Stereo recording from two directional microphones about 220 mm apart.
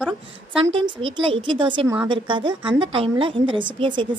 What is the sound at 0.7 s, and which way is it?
A woman's voice, 25° right (ahead or behind).